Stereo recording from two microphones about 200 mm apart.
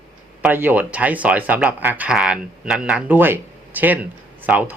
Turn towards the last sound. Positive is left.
turn(degrees=-10)  # may be behind; listen again after turning